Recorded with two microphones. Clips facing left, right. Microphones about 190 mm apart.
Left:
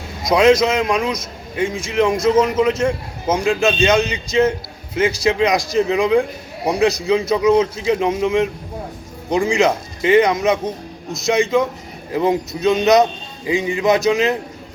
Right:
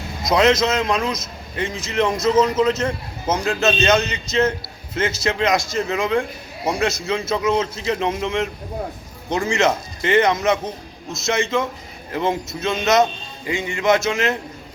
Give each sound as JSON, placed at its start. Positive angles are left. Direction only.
{"t": 0.3, "sound": "a man's voice", "side_deg": 10}